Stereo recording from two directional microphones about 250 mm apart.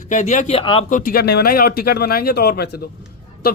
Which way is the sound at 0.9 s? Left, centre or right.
Left.